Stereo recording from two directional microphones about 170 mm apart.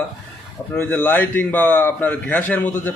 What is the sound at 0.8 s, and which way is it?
A man's voice, 10° left (ahead or behind).